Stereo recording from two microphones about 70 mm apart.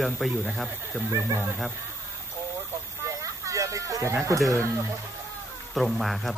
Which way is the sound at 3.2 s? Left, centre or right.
Right.